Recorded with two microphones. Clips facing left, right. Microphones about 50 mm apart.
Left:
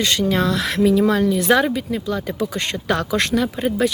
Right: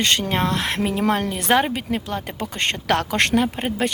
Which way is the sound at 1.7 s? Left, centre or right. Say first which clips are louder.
Left 2 dB; right.